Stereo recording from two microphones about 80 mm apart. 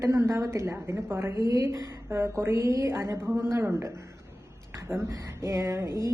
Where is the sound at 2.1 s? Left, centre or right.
Right.